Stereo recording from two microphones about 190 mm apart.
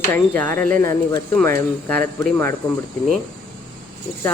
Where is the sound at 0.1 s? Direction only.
10° left (ahead or behind).